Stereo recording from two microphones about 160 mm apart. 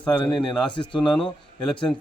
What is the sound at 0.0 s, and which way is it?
A man's voice, 5° left (ahead or behind).